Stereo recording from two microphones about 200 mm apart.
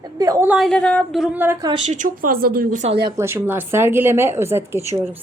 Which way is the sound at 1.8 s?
35° right (ahead or behind).